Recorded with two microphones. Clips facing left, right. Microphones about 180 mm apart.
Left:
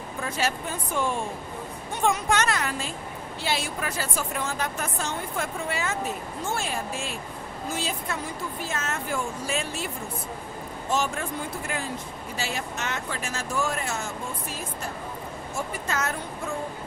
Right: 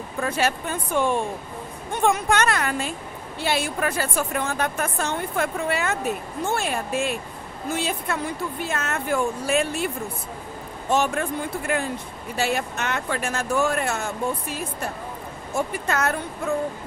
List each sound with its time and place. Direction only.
0.2 s a woman's voice: 60° right (ahead or behind)
2.0 s a woman's voice: 55° right (ahead or behind)
10.9 s a woman's voice: 60° right (ahead or behind)
15.9 s a woman's voice: 60° right (ahead or behind)